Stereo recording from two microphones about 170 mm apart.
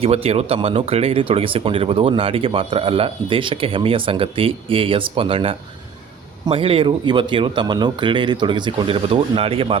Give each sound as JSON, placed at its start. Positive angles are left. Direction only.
{"t": 0.0, "sound": "speech", "side_deg": -35}